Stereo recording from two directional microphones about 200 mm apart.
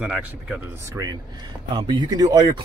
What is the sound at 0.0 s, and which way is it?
Speech, 5° right (ahead or behind).